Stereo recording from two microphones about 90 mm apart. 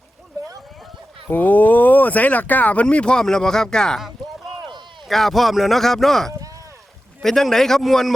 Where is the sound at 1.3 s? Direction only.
20° left (ahead or behind).